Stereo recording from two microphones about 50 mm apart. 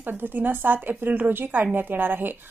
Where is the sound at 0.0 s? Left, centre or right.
Right.